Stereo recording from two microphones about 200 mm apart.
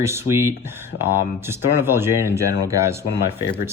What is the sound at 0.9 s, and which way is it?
Speech, 90° left.